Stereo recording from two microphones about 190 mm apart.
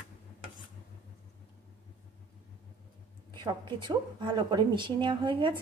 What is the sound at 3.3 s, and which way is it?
Speech, 25° right (ahead or behind).